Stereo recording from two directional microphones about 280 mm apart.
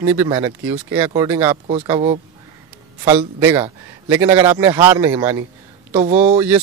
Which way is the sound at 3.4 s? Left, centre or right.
Centre.